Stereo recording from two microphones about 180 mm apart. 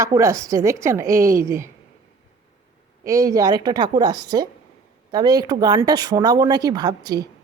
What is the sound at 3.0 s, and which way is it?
A woman's voice, 15° right (ahead or behind).